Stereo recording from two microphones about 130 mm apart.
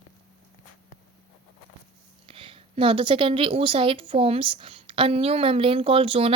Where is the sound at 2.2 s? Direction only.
45° right (ahead or behind).